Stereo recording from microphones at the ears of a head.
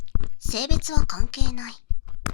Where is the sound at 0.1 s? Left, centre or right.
Left.